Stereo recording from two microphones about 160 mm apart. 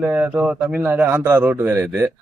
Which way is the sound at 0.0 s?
10° right (ahead or behind).